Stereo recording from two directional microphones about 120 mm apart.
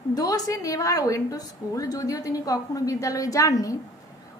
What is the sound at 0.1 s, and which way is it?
A woman's voice, 30° left (ahead or behind).